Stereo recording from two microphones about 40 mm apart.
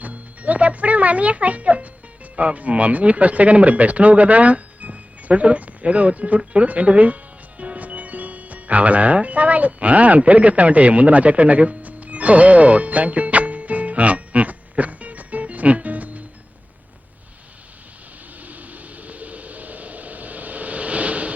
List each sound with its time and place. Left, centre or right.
0.0 s music: right
2.3 s speech: right
7.6 s music: right
18.4 s a sound: right